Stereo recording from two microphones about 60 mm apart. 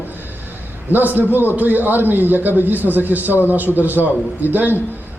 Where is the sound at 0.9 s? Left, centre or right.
Right.